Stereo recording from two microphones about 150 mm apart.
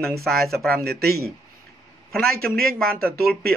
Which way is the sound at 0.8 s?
90° right.